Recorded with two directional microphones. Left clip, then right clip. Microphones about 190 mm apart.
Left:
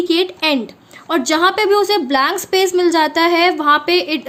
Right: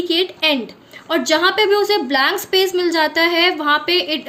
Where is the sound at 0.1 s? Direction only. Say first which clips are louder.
Right 1 dB; 50° left (ahead or behind).